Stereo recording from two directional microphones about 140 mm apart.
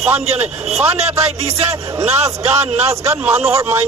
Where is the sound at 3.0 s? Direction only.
15° right (ahead or behind).